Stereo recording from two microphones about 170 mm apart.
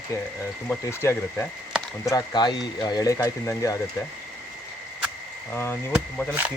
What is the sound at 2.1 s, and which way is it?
Speech, 25° left (ahead or behind).